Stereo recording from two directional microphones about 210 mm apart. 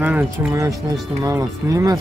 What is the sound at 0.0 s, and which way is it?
Speech, 5° right (ahead or behind).